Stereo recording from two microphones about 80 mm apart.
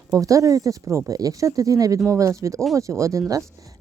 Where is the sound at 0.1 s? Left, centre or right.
Right.